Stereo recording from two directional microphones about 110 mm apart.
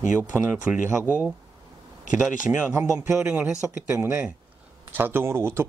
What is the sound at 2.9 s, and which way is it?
Speech, 25° right (ahead or behind).